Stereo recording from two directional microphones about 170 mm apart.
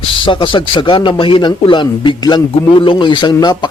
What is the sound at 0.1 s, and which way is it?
A man's voice, 30° left (ahead or behind).